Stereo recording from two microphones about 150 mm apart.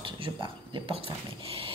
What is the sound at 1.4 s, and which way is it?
Dog, 35° right (ahead or behind).